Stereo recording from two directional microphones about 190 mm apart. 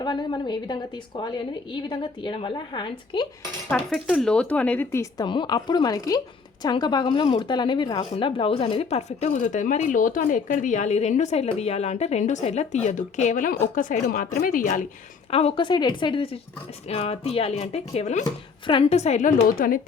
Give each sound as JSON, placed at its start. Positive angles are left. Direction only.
{"t": 0.0, "sound": "speech", "side_deg": 20}
{"t": 3.7, "sound": "speech", "side_deg": 5}
{"t": 15.3, "sound": "speech", "side_deg": 30}
{"t": 19.4, "sound": "speech", "side_deg": 50}